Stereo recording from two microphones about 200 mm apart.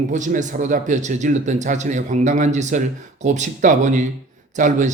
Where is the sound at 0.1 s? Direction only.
40° right (ahead or behind).